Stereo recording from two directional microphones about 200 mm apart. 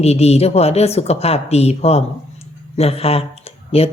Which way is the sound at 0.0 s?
30° left (ahead or behind).